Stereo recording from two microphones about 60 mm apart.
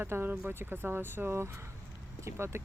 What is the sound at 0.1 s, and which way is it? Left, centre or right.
Speech, right.